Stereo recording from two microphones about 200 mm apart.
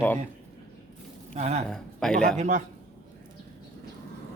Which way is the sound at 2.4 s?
35° right (ahead or behind).